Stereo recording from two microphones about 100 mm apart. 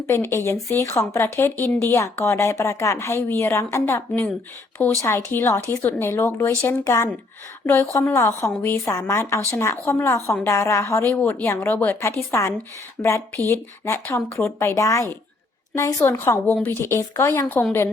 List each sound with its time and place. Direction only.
0.1 s speech: 25° left (ahead or behind)
6.8 s speech: 30° left (ahead or behind)
11.0 s speech: 20° left (ahead or behind)
13.0 s speech: 30° left (ahead or behind)